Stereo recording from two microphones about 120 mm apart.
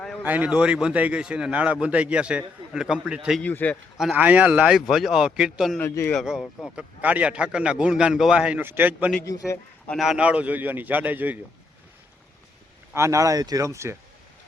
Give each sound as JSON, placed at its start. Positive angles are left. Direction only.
{"t": 0.3, "sound": "a man's voice", "side_deg": -10}
{"t": 3.4, "sound": "a man's voice", "side_deg": 15}
{"t": 4.1, "sound": "a man's voice", "side_deg": -15}
{"t": 5.8, "sound": "a man's voice", "side_deg": 20}
{"t": 6.1, "sound": "a man's voice", "side_deg": -5}
{"t": 9.9, "sound": "a man's voice", "side_deg": -5}
{"t": 12.9, "sound": "speech", "side_deg": -25}